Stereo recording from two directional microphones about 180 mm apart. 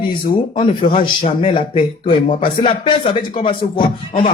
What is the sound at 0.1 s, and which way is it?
Speech, 25° left (ahead or behind).